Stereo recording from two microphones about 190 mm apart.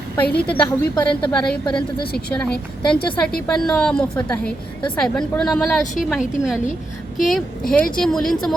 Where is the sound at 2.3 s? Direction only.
5° left (ahead or behind).